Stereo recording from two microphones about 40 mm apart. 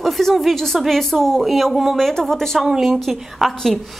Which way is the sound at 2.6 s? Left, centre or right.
Centre.